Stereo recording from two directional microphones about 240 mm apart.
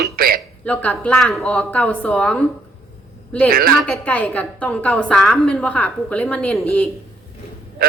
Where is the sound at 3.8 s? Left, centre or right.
Centre.